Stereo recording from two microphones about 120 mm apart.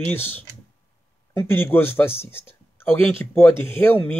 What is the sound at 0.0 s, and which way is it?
Speech, 15° left (ahead or behind).